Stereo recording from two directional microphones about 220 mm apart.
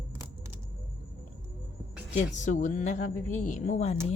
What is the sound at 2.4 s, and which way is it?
A woman's voice, 35° left (ahead or behind).